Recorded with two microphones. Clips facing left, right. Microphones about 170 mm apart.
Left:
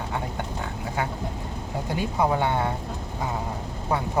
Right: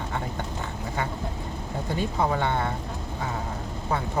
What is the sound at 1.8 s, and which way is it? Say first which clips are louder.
Speech: left 2 dB; 10° left (ahead or behind).